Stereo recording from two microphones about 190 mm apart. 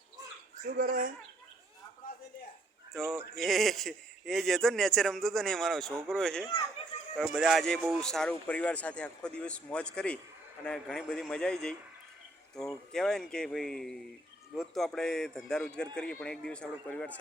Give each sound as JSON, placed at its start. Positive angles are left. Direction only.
{"t": 0.5, "sound": "speech", "side_deg": -45}
{"t": 2.9, "sound": "speech", "side_deg": 0}
{"t": 12.9, "sound": "speech", "side_deg": 5}